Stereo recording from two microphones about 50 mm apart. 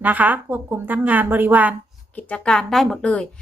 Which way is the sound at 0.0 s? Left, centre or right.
Right.